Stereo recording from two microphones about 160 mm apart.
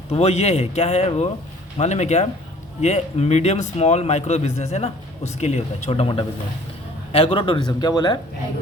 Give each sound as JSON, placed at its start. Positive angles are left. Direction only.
{"t": 0.1, "sound": "a man's voice", "side_deg": 40}